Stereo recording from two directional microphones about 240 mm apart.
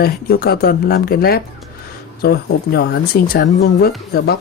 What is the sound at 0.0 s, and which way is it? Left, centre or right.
Speech, left.